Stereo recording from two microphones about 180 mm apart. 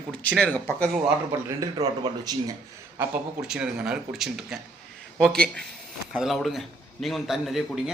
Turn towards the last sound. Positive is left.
turn(degrees=0)  # may be behind; listen again after turning